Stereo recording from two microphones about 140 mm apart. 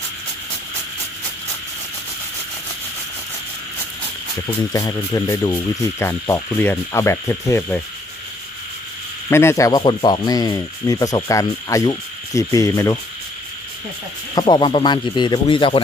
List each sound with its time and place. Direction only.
4.7 s speech: 25° left (ahead or behind)
9.3 s speech: 20° left (ahead or behind)
14.3 s speech: 35° left (ahead or behind)